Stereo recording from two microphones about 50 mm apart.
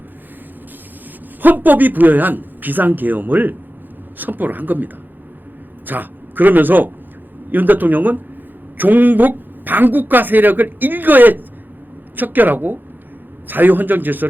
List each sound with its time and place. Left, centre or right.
1.4 s a woman's voice: right